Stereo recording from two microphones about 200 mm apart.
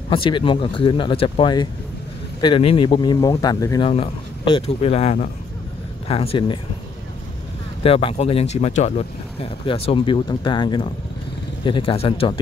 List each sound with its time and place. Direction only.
0.1 s speech: 25° left (ahead or behind)
3.9 s speech: 30° left (ahead or behind)
7.8 s speech: 30° left (ahead or behind)